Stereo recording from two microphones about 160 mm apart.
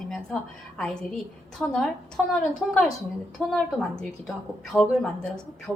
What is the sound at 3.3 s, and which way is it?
A woman's voice, 5° left (ahead or behind).